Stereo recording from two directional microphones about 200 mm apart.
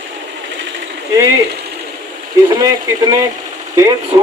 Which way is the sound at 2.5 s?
20° right (ahead or behind).